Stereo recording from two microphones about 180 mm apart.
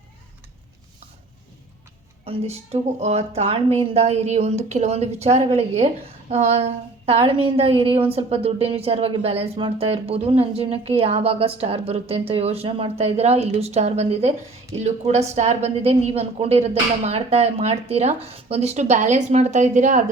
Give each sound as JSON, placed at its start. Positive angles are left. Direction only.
{"t": 2.2, "sound": "a woman's voice", "side_deg": -35}